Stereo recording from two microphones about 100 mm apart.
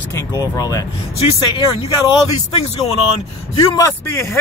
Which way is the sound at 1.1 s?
70° left (ahead or behind).